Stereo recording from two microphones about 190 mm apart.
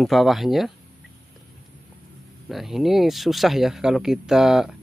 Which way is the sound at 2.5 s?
Centre (ahead or behind).